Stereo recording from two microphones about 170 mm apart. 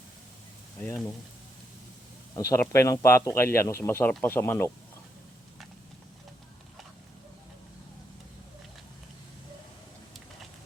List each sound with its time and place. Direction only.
0.8 s a man's voice: 15° left (ahead or behind)
2.3 s a man's voice: 15° left (ahead or behind)